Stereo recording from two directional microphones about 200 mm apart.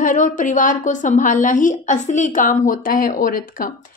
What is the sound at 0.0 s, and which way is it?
A woman's voice, 40° left (ahead or behind).